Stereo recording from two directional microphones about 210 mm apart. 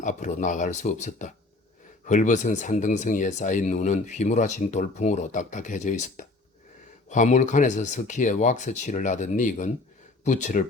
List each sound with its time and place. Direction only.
0.0 s speech: 35° left (ahead or behind)